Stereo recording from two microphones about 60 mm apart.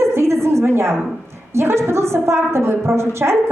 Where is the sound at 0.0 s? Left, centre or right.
Right.